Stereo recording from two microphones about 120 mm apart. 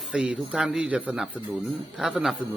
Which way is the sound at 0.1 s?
10° right (ahead or behind).